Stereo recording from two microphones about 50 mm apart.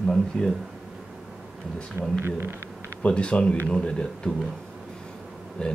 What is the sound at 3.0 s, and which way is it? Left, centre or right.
Speech, left.